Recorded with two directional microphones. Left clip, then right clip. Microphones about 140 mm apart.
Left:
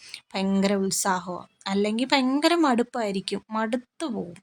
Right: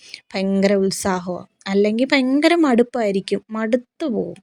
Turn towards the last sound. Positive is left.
turn(degrees=-20)  # may be behind; listen again after turning